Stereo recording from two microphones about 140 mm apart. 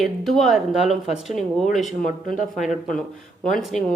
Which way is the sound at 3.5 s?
5° left (ahead or behind).